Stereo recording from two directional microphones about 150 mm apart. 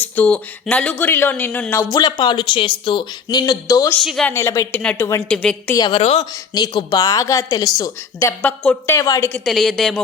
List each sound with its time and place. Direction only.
0.0 s speech: 10° left (ahead or behind)
4.0 s speech: centre (ahead or behind)
4.3 s speech: 20° left (ahead or behind)
4.7 s a woman's voice: 10° left (ahead or behind)
5.7 s speech: 25° left (ahead or behind)
6.0 s speech: 45° left (ahead or behind)
6.5 s speech: 30° left (ahead or behind); by 9.0 s 10° left (ahead or behind)
9.0 s speech: 20° left (ahead or behind)
9.3 s speech: centre (ahead or behind)